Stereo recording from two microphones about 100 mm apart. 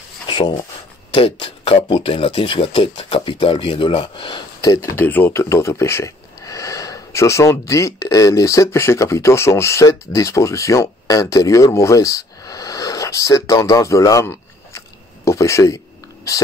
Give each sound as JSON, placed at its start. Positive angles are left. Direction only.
{"t": 0.3, "sound": "a sound", "side_deg": 45}
{"t": 1.1, "sound": "speech", "side_deg": 60}
{"t": 4.9, "sound": "speech", "side_deg": 20}
{"t": 5.3, "sound": "speech", "side_deg": 30}